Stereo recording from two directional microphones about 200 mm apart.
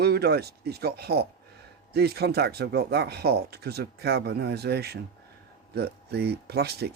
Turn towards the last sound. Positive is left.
turn(degrees=-55)  # may be behind; listen again after turning